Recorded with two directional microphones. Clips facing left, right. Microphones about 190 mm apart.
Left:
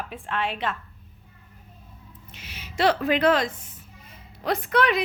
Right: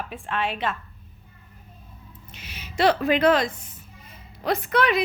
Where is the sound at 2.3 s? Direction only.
15° right (ahead or behind).